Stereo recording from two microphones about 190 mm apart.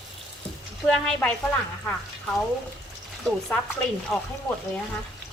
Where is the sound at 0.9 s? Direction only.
5° left (ahead or behind).